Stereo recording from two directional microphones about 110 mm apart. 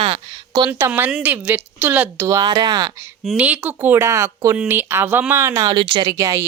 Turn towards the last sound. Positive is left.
turn(degrees=-30)  # may be behind; listen again after turning